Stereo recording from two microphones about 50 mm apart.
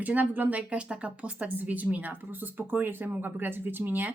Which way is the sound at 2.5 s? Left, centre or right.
Right.